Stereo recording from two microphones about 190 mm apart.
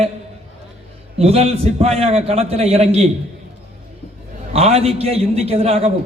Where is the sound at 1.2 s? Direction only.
30° right (ahead or behind).